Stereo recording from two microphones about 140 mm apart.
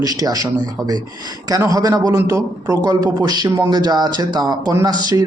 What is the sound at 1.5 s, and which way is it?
A man's voice, 25° right (ahead or behind).